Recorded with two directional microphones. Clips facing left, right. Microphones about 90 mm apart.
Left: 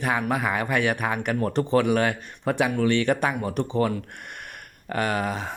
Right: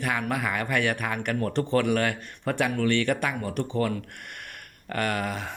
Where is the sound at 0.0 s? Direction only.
20° left (ahead or behind).